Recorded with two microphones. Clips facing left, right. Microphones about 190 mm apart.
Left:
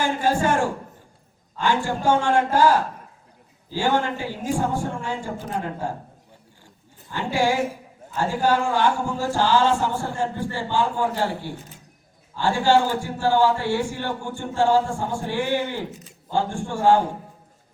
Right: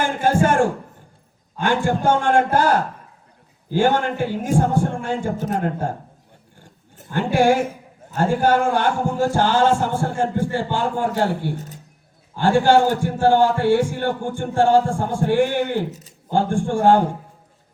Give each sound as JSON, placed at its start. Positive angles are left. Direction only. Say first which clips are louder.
{"t": 0.0, "sound": "a sound", "louder": "right 3 dB", "side_deg": -50}
{"t": 1.6, "sound": "speech", "louder": "right 3 dB", "side_deg": -55}
{"t": 7.1, "sound": "a man's voice", "louder": "right 6 dB", "side_deg": -55}